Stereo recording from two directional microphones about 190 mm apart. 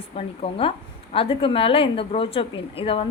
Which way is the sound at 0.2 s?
30° left (ahead or behind).